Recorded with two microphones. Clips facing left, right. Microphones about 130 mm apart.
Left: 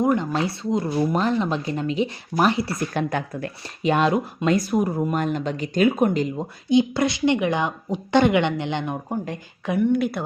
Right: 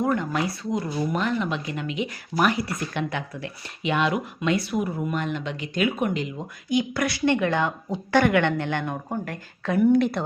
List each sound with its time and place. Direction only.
0.0 s a woman's voice: 20° left (ahead or behind)
2.9 s speech: 40° left (ahead or behind)
6.7 s a woman's voice: 25° left (ahead or behind)
9.7 s speech: centre (ahead or behind)